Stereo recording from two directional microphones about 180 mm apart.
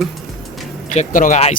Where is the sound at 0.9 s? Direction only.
45° left (ahead or behind).